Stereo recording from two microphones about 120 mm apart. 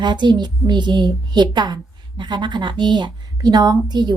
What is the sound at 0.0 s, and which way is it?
A woman's voice, 40° right (ahead or behind).